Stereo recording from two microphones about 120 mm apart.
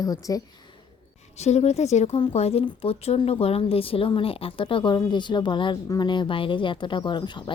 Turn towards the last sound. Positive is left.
turn(degrees=40)  # may be behind; listen again after turning